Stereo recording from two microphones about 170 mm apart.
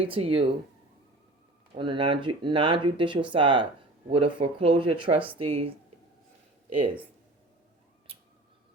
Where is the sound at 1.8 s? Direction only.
30° right (ahead or behind).